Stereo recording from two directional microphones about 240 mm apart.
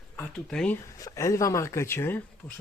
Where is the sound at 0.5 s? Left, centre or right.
Centre.